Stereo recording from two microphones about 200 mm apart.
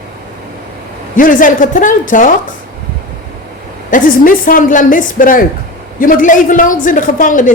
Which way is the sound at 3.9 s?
45° left (ahead or behind).